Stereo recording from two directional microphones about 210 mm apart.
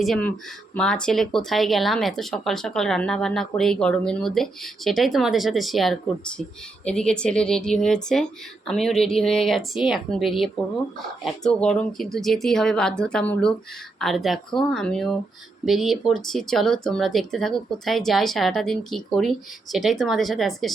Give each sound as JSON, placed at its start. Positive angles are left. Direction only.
{"t": 0.0, "sound": "speech", "side_deg": 5}